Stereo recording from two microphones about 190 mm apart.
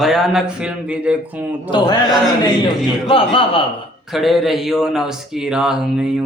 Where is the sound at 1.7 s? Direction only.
25° left (ahead or behind).